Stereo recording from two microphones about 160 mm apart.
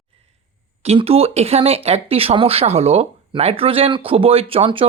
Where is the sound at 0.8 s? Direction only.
40° right (ahead or behind).